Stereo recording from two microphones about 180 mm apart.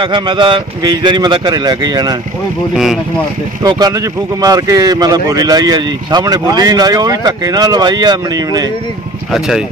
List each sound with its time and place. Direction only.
0.0 s speech: 25° right (ahead or behind)
2.7 s speech: centre (ahead or behind)
4.4 s speech: 20° right (ahead or behind)